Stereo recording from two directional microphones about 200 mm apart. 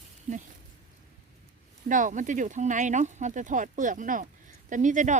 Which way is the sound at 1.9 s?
40° right (ahead or behind).